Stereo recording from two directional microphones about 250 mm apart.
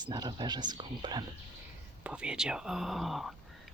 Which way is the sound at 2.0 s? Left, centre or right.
Centre.